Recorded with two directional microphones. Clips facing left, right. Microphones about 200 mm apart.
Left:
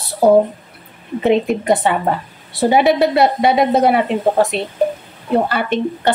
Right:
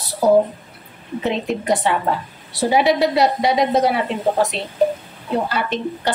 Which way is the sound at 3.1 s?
55° left (ahead or behind).